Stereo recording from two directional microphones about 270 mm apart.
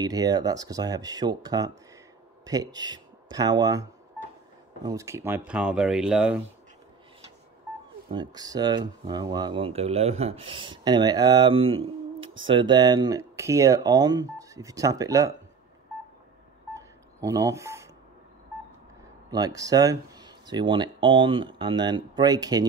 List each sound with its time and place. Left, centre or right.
0.0 s speech: centre
8.1 s speech: centre
16.7 s telephone dialing: centre
19.3 s speech: centre